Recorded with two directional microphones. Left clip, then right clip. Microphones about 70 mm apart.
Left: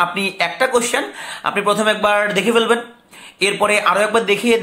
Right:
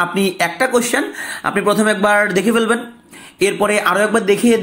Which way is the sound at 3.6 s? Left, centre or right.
Right.